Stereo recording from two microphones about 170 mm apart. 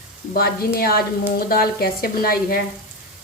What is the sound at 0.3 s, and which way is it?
Speech, 60° left (ahead or behind).